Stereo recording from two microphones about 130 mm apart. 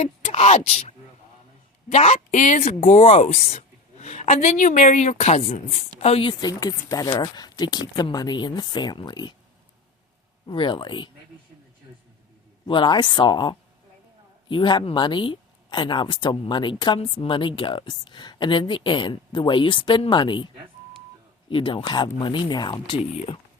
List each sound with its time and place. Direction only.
0.0 s speech: 50° left (ahead or behind)
6.4 s a woman's voice: 30° left (ahead or behind)
10.4 s a woman's voice: 40° left (ahead or behind)
12.6 s a woman's voice: 35° left (ahead or behind)
21.5 s a woman's voice: 40° left (ahead or behind)